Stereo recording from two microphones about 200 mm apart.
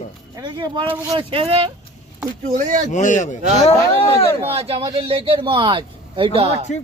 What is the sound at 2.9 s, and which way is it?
Speech, 40° left (ahead or behind).